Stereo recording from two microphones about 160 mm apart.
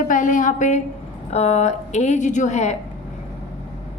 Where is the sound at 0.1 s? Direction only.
55° left (ahead or behind).